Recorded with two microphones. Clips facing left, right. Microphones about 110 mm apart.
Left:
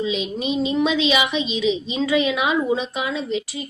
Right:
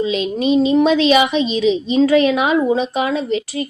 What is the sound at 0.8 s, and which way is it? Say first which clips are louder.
A woman's voice: right 7 dB; 45° right (ahead or behind).